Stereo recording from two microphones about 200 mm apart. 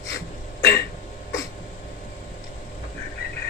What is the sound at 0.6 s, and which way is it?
Throat clearing, 50° left (ahead or behind).